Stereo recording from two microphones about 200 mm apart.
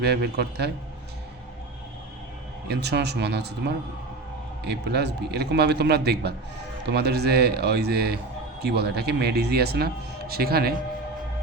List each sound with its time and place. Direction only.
0.0 s speech: 55° right (ahead or behind)
2.8 s a man's voice: 55° right (ahead or behind)
4.6 s a man's voice: 55° right (ahead or behind)